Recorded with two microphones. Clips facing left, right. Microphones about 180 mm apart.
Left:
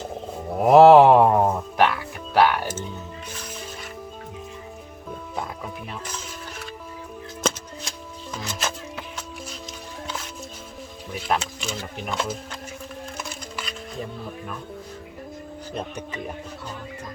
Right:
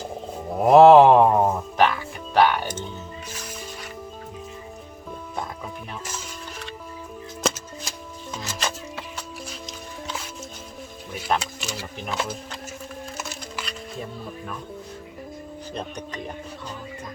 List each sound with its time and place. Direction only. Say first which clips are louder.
0.0 s a sound: even; centre (ahead or behind)
5.4 s music: even; centre (ahead or behind)
7.4 s music: even; centre (ahead or behind)
11.2 s a sound: even; centre (ahead or behind)
13.1 s music: even; centre (ahead or behind)
15.7 s music: left 1 dB; 5° left (ahead or behind)